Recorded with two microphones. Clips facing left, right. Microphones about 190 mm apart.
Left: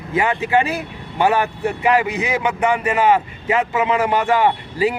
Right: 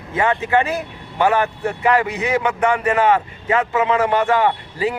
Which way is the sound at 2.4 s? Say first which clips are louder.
Left 1 dB; 5° left (ahead or behind).